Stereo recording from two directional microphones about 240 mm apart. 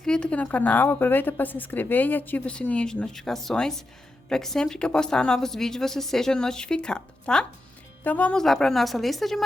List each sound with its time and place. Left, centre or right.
0.0 s a woman's voice: centre